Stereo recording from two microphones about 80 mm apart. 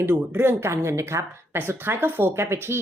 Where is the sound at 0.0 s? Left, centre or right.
Right.